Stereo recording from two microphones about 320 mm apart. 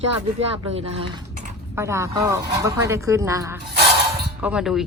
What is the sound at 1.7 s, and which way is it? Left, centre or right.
A woman's voice, centre.